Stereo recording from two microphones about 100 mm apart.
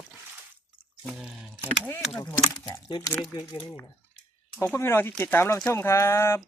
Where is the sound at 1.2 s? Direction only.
5° right (ahead or behind).